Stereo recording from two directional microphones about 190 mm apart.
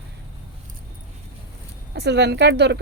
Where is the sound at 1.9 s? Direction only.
60° right (ahead or behind).